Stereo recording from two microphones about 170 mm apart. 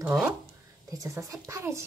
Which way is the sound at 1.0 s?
20° right (ahead or behind).